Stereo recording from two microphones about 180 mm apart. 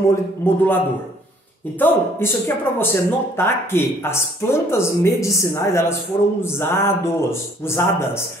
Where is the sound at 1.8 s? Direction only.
10° left (ahead or behind).